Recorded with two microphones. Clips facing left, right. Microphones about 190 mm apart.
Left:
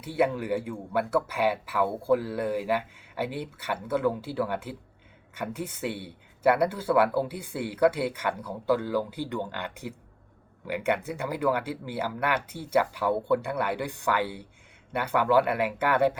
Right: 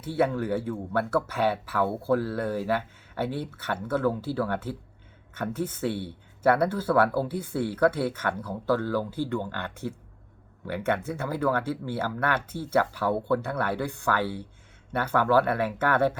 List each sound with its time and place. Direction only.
0.0 s speech: 15° left (ahead or behind)